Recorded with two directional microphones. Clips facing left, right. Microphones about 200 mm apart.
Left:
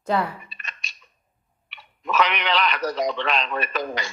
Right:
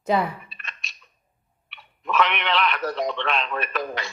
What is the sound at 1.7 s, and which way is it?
Speech, centre (ahead or behind).